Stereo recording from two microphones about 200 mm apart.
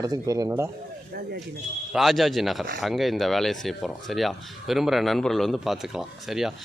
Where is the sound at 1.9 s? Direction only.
Centre (ahead or behind).